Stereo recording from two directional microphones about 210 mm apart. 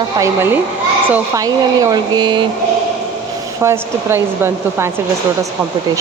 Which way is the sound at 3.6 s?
15° right (ahead or behind).